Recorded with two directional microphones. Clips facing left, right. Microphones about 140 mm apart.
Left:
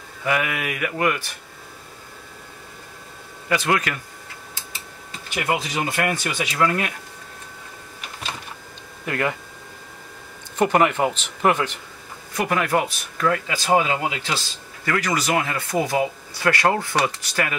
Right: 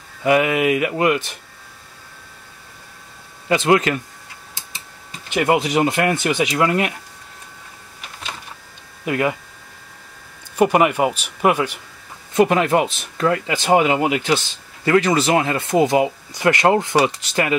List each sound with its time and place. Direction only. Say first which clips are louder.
0.2 s speech: right 8 dB; 25° right (ahead or behind)
3.4 s speech: right 6 dB; 25° right (ahead or behind)
5.3 s speech: right 7 dB; 20° right (ahead or behind)
9.0 s speech: right 4 dB; 15° right (ahead or behind)
10.5 s speech: right 3 dB; 10° right (ahead or behind)
12.4 s speech: right 6 dB; 25° right (ahead or behind)